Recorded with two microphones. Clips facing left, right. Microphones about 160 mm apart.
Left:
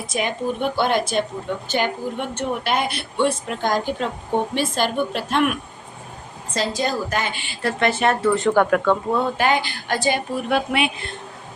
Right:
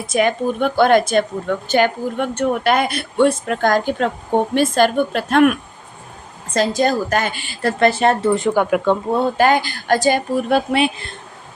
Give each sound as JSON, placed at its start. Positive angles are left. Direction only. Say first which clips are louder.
{"t": 0.1, "sound": "a woman's voice", "louder": "right 7 dB", "side_deg": -50}
{"t": 8.4, "sound": "speech", "louder": "right 1 dB", "side_deg": -10}
{"t": 9.1, "sound": "a woman's voice", "louder": "right 4 dB", "side_deg": -40}